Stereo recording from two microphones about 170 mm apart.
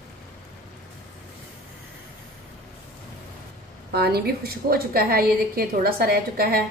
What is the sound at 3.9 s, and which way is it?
A woman's voice, 70° right (ahead or behind).